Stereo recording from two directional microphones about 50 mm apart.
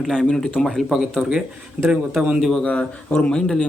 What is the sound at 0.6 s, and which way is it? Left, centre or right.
Speech, centre.